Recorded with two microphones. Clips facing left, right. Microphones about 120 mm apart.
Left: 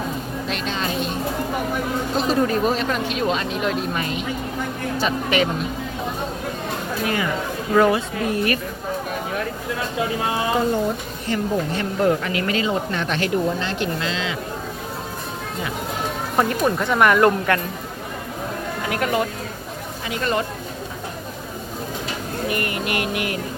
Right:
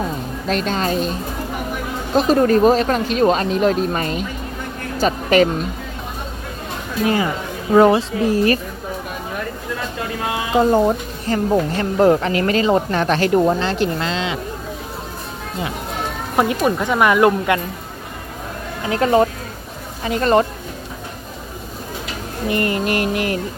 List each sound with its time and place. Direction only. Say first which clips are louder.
0.4 s speech: right 7 dB; 40° right (ahead or behind)
2.1 s a woman's voice: right 7 dB; 45° right (ahead or behind)
7.7 s speech: right 5 dB; 25° right (ahead or behind)
10.7 s a woman's voice: right 6 dB; 40° right (ahead or behind)
16.3 s speech: right 3 dB; 10° right (ahead or behind)
18.9 s a woman's voice: right 8 dB; 30° right (ahead or behind)
22.4 s a woman's voice: right 6 dB; 30° right (ahead or behind)